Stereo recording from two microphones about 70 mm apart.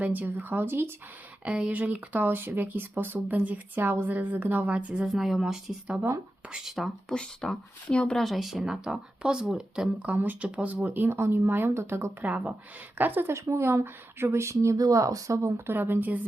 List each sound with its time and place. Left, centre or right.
0.0 s a woman's voice: right
1.5 s a woman's voice: centre
5.0 s speech: centre
7.1 s speech: centre
8.2 s speech: centre
10.1 s a woman's voice: right
10.8 s speech: right